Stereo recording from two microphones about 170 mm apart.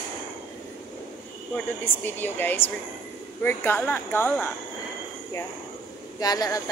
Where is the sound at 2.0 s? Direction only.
10° left (ahead or behind).